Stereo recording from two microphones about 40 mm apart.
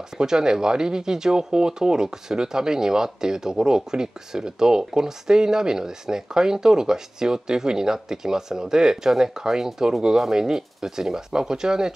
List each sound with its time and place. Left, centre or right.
0.2 s speech: centre